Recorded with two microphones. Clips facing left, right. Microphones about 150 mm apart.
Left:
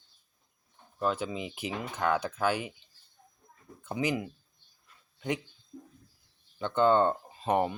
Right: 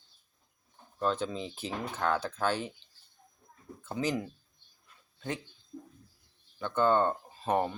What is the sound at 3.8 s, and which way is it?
Speech, 15° left (ahead or behind).